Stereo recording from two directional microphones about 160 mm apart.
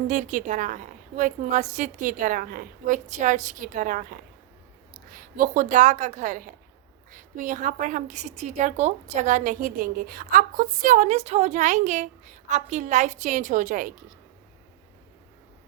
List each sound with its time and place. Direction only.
0.1 s a woman's voice: 50° right (ahead or behind)